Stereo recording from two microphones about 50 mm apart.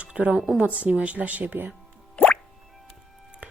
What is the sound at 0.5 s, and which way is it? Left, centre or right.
A woman's voice, right.